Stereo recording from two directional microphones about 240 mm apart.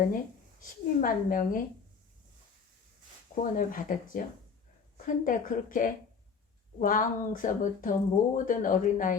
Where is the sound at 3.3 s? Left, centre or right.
Left.